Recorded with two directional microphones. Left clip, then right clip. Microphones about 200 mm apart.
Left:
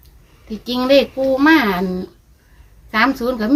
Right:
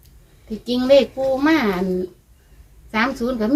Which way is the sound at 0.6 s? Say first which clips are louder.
Left 1 dB; 45° left (ahead or behind).